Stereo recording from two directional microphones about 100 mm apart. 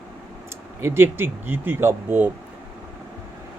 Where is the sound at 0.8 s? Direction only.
25° right (ahead or behind).